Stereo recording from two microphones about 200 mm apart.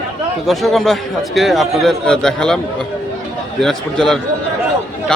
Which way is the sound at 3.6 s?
Centre (ahead or behind).